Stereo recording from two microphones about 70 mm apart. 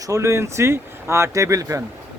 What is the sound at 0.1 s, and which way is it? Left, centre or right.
Speech, right.